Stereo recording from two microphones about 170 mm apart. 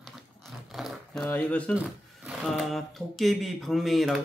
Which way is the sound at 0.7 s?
5° left (ahead or behind).